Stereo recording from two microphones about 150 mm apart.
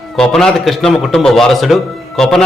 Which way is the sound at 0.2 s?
5° left (ahead or behind).